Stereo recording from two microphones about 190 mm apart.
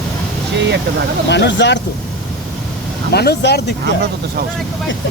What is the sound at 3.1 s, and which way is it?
Speech, 60° left (ahead or behind).